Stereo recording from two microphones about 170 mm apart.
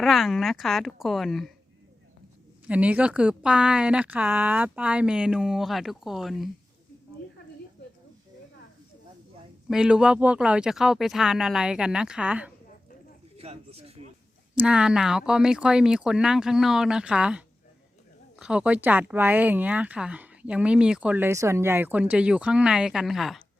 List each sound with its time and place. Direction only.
0.0 s a woman's voice: centre (ahead or behind)
2.6 s a woman's voice: 10° right (ahead or behind)
9.6 s a woman's voice: 5° right (ahead or behind)
13.3 s a sound: 35° right (ahead or behind)
14.5 s a woman's voice: 10° right (ahead or behind)